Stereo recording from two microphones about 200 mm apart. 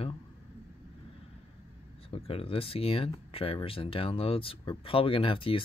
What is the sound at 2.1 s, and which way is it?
Speech, 30° left (ahead or behind).